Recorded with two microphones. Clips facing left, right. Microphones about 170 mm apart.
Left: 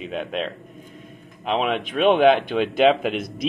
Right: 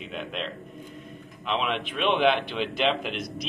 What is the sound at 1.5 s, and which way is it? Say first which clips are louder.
Speech: left 5 dB; 45° left (ahead or behind).